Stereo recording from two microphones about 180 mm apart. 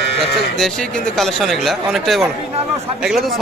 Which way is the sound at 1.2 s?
Centre (ahead or behind).